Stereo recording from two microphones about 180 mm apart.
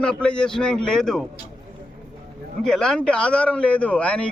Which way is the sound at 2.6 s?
5° left (ahead or behind).